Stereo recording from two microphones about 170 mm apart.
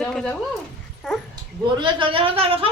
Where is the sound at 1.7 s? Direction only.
30° right (ahead or behind).